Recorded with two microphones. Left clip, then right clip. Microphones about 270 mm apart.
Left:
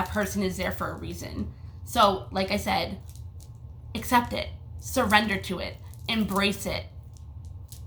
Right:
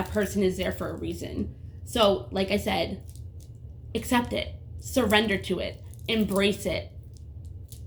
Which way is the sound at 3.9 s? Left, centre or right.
Centre.